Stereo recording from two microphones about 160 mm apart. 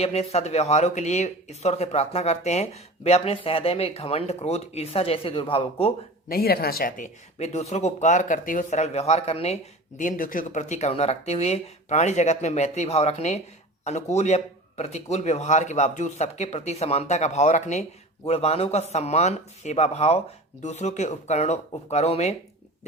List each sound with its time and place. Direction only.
0.0 s speech: 40° left (ahead or behind)
6.2 s speech: 70° left (ahead or behind); by 9.6 s 40° left (ahead or behind)
10.0 s speech: 55° left (ahead or behind)